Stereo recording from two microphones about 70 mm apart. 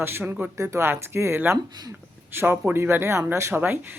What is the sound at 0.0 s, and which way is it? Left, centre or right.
Speech, right.